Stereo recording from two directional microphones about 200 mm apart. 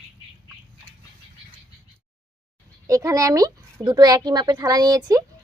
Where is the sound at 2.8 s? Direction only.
15° right (ahead or behind).